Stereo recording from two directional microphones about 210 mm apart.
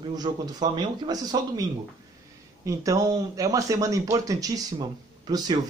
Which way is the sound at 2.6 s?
15° right (ahead or behind).